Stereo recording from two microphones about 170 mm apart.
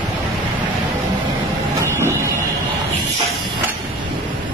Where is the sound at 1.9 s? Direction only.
15° right (ahead or behind).